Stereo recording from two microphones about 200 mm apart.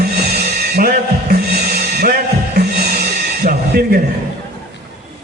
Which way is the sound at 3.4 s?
50° right (ahead or behind).